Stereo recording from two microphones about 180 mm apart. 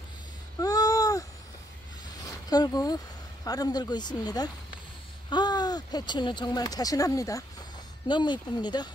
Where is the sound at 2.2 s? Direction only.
20° left (ahead or behind).